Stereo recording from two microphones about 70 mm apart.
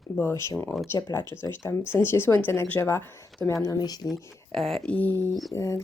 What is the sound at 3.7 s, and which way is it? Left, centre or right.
Speech, left.